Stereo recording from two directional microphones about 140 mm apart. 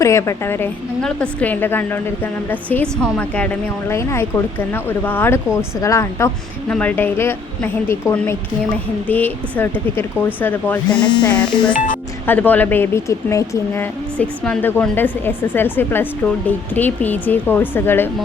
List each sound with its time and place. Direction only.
0.0 s a woman's voice: 20° left (ahead or behind)
6.7 s speech: 10° left (ahead or behind)
14.2 s speech: 5° left (ahead or behind)